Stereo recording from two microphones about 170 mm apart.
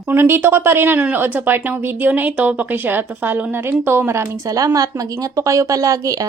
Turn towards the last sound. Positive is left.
turn(degrees=-20)  # may be behind; listen again after turning